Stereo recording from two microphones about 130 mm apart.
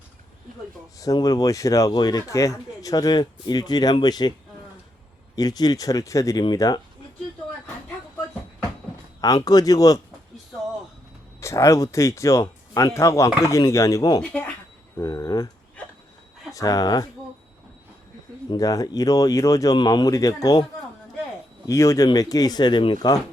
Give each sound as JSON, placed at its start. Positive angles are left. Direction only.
{"t": 0.9, "sound": "speech", "side_deg": 30}
{"t": 5.4, "sound": "speech", "side_deg": 30}
{"t": 9.2, "sound": "speech", "side_deg": 30}
{"t": 11.3, "sound": "speech", "side_deg": 25}
{"t": 14.2, "sound": "speech", "side_deg": 10}
{"t": 14.9, "sound": "a sound", "side_deg": 25}
{"t": 16.5, "sound": "speech", "side_deg": 25}
{"t": 18.5, "sound": "speech", "side_deg": 25}
{"t": 21.7, "sound": "speech", "side_deg": 20}